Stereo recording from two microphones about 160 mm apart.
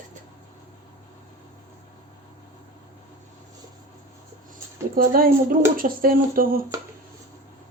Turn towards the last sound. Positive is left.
turn(degrees=-65)  # may be behind; listen again after turning